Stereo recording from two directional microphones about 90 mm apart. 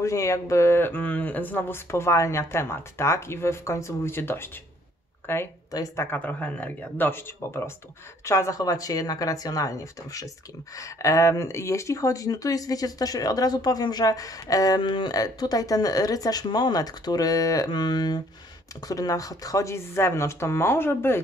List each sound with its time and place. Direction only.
0.0 s speech: 35° left (ahead or behind)
5.7 s speech: 40° left (ahead or behind)
6.0 s speech: 20° left (ahead or behind); by 17.6 s 40° left (ahead or behind)
17.6 s speech: 50° left (ahead or behind); by 21.2 s 25° left (ahead or behind)